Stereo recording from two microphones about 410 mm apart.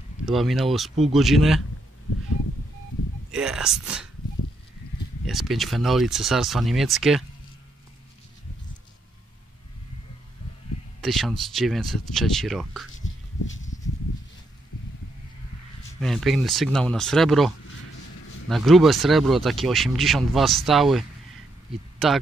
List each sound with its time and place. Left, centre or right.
0.2 s speech: centre
3.3 s speech: centre
5.2 s speech: centre
11.0 s speech: centre
13.0 s a sound: left
16.0 s speech: centre
21.9 s a sound: centre